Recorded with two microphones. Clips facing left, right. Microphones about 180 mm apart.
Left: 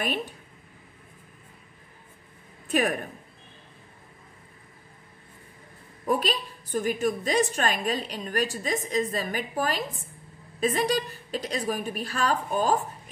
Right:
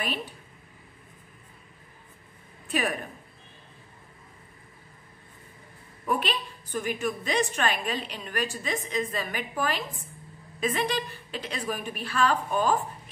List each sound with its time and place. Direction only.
0.0 s a woman's voice: 50° left (ahead or behind)
2.7 s a woman's voice: 50° left (ahead or behind)
6.0 s a woman's voice: 40° left (ahead or behind)